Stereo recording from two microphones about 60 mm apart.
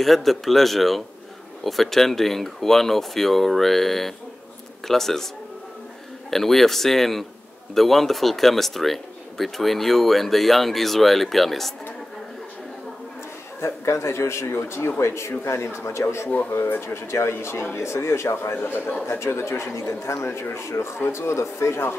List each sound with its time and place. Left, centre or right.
0.0 s speech: centre
6.3 s speech: centre
13.6 s speech: left
16.4 s speech: left
18.6 s speech: left
19.0 s speech: left